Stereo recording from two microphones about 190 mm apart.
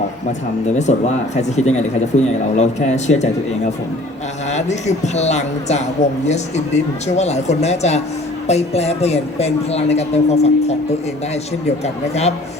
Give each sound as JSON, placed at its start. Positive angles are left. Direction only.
{"t": 0.7, "sound": "speech", "side_deg": 35}
{"t": 4.5, "sound": "speech", "side_deg": 35}